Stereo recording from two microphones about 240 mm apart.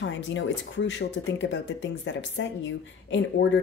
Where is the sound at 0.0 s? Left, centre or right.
Left.